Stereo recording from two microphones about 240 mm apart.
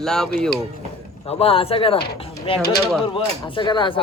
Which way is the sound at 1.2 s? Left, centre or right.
Left.